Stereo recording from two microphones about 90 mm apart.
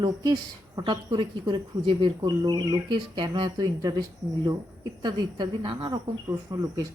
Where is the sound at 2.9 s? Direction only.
60° right (ahead or behind).